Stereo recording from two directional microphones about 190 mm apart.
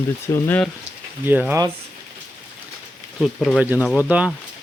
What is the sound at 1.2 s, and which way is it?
Speech, 10° right (ahead or behind).